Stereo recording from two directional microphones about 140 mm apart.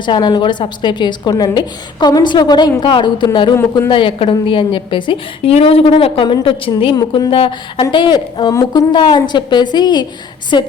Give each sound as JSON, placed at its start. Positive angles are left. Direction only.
{"t": 0.0, "sound": "a woman's voice", "side_deg": 30}
{"t": 3.5, "sound": "speech", "side_deg": 20}
{"t": 3.8, "sound": "a woman's voice", "side_deg": 35}